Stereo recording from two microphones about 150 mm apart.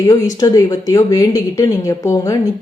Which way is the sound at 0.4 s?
25° left (ahead or behind).